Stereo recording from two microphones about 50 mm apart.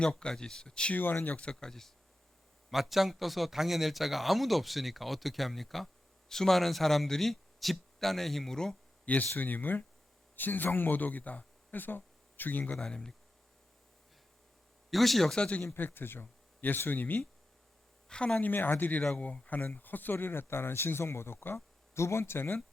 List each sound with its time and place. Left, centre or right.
0.0 s speech: centre
0.9 s speech: left
1.5 s speech: centre
2.6 s speech: centre
9.0 s speech: left
12.7 s speech: centre
14.8 s speech: centre
15.4 s speech: left
15.6 s speech: left
18.1 s speech: centre
18.3 s speech: left